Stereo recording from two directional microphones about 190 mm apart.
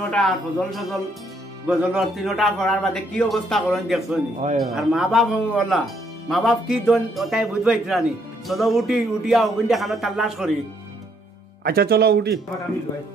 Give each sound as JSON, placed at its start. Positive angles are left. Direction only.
{"t": 0.1, "sound": "speech", "side_deg": 0}
{"t": 11.6, "sound": "speech", "side_deg": -55}